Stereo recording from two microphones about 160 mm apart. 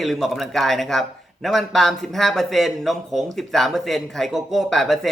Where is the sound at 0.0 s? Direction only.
Centre (ahead or behind).